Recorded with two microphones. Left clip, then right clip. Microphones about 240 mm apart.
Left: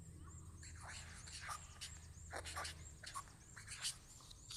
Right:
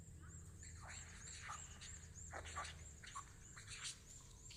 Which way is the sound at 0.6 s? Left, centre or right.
Centre.